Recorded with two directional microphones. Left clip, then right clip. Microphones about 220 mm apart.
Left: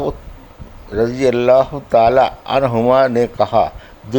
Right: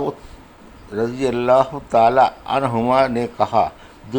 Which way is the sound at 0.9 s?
25° left (ahead or behind).